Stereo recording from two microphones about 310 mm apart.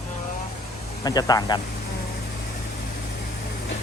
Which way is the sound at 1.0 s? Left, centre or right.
Centre.